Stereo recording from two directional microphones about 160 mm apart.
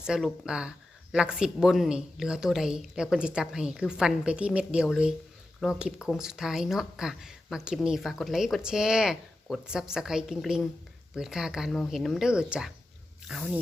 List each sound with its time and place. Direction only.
0.0 s speech: 5° right (ahead or behind)